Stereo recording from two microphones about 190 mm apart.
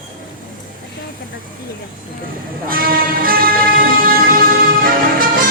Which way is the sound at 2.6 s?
50° right (ahead or behind).